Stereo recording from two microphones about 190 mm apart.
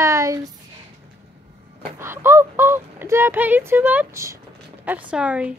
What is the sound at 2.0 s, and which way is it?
A child's voice, 15° right (ahead or behind).